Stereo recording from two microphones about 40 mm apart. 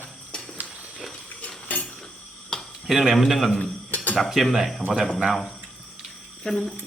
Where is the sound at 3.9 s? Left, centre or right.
Left.